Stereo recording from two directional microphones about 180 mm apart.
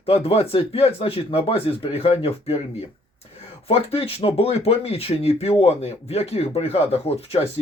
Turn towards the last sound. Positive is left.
turn(degrees=35)  # may be behind; listen again after turning